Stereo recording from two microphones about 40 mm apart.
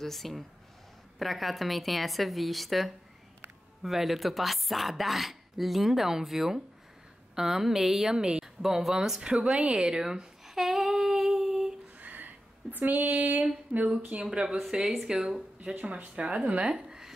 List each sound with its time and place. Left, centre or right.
0.0 s a woman's voice: centre; by 8.5 s right
8.6 s a woman's voice: centre
9.2 s speech: right
9.6 s humming: right
12.0 s a sound: right
12.7 s speech: right
13.7 s speech: right
16.7 s a sound: centre